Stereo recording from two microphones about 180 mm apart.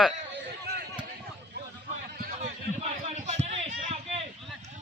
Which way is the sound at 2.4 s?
35° right (ahead or behind).